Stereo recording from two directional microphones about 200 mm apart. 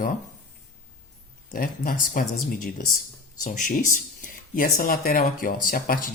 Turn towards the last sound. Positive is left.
turn(degrees=45)  # may be behind; listen again after turning